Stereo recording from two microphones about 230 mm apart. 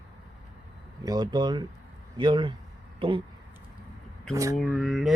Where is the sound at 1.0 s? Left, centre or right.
Centre.